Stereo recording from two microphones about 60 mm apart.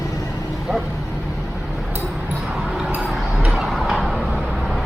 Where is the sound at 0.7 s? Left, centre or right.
Centre.